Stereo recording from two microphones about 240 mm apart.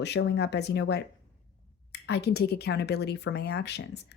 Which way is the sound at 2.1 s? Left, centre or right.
Left.